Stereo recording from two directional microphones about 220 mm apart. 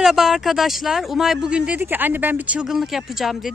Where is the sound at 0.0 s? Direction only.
Centre (ahead or behind).